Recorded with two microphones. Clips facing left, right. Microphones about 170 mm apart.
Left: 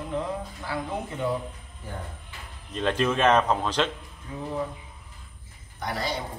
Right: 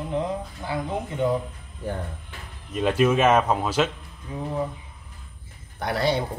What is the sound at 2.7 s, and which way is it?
Speech, 10° right (ahead or behind).